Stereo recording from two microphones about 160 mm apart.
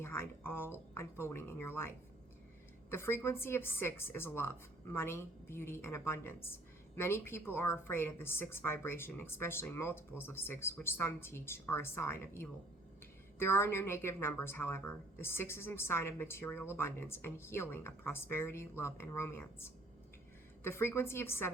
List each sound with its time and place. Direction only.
0.0 s a woman's voice: 15° left (ahead or behind)
2.9 s a woman's voice: 15° left (ahead or behind)